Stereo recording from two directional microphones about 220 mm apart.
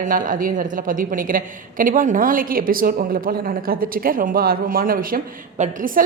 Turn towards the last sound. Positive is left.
turn(degrees=-35)  # may be behind; listen again after turning